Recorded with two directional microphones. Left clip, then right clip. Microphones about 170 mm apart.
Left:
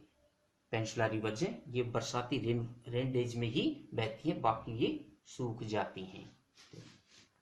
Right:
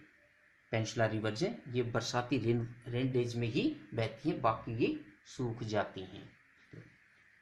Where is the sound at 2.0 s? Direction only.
20° right (ahead or behind).